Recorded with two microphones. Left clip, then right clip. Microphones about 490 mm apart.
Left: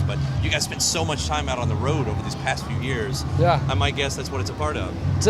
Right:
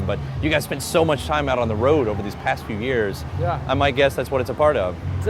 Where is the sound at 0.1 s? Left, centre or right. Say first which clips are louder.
Right 5 dB; right.